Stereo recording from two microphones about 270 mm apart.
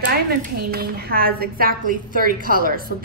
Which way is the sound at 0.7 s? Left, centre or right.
Right.